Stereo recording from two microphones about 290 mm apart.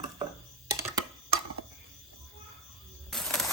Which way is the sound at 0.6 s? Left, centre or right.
Centre.